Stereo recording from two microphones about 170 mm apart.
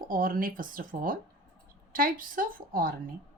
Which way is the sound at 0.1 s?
55° right (ahead or behind).